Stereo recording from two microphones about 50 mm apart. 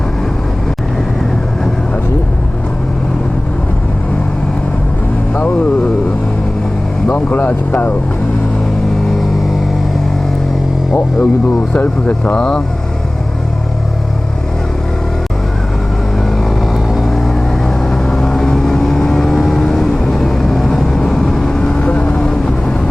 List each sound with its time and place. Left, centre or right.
5.3 s vehicle: left
7.3 s speech: left
10.9 s a sound: left
11.8 s speech: left
12.3 s speech: centre
16.4 s vehicle: centre